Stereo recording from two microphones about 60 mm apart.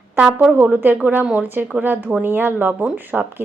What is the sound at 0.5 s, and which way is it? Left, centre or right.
Speech, right.